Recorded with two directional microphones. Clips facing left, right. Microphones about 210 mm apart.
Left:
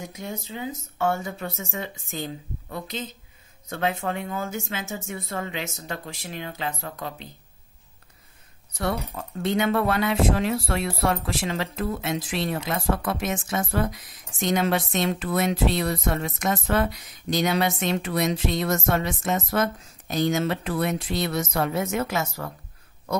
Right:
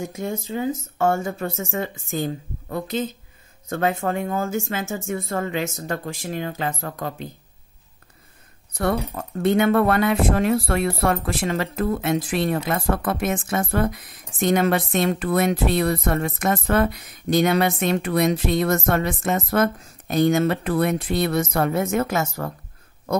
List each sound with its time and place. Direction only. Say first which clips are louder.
0.1 s speech: right 7 dB; 45° right (ahead or behind)
8.7 s speech: right 5 dB; 55° right (ahead or behind)